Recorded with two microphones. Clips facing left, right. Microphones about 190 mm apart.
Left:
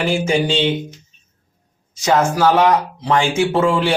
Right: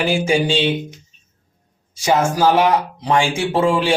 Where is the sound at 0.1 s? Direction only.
10° right (ahead or behind).